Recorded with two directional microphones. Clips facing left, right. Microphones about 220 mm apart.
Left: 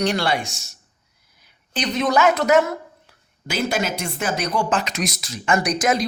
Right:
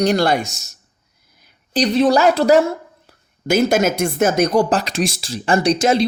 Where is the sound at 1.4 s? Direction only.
40° right (ahead or behind).